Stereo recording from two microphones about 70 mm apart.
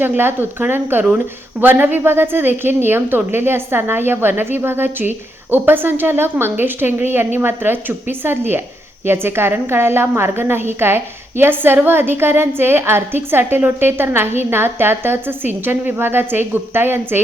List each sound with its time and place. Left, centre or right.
0.0 s a woman's voice: right